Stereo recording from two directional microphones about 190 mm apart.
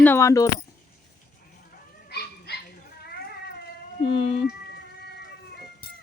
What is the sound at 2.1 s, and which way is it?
Dog, 60° left (ahead or behind).